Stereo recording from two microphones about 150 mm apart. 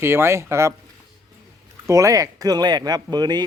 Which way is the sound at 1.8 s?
20° right (ahead or behind).